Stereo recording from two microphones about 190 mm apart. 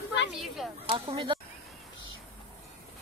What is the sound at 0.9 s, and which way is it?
Speech, 25° right (ahead or behind).